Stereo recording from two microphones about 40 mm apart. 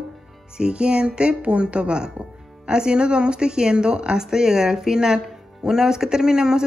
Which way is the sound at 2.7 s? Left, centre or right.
Centre.